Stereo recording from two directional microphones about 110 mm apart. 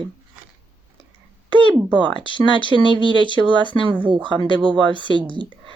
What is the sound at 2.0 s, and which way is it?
Speech, 45° right (ahead or behind).